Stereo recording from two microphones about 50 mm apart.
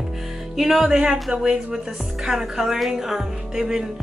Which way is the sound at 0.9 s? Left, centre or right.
Centre.